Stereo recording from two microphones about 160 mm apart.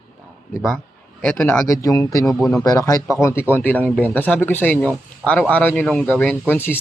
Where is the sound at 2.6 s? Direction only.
20° left (ahead or behind).